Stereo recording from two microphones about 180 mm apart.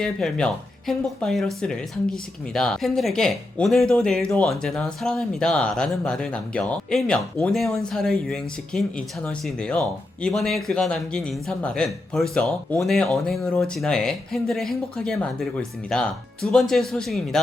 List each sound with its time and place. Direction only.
0.0 s speech: 5° left (ahead or behind)